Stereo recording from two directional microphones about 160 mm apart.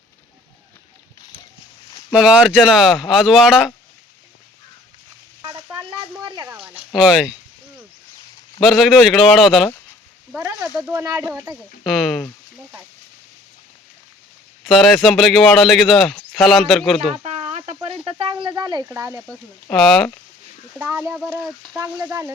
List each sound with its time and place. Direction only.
2.1 s a man's voice: 5° right (ahead or behind)
5.7 s a sound: 25° right (ahead or behind)
6.6 s a sound: 10° right (ahead or behind)
8.6 s a man's voice: centre (ahead or behind)
10.3 s a sound: 15° right (ahead or behind)
10.8 s speech: 15° right (ahead or behind)
11.9 s a man's voice: centre (ahead or behind)
14.6 s a man's voice: centre (ahead or behind)
17.2 s a sound: 45° right (ahead or behind); by 19.2 s 20° right (ahead or behind)
19.7 s a man's voice: 5° left (ahead or behind)
20.7 s speech: 10° right (ahead or behind)
21.2 s a man's voice: centre (ahead or behind)
21.8 s speech: 15° right (ahead or behind)